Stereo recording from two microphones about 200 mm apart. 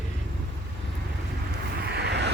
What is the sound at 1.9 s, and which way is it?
Vehicle, 55° right (ahead or behind).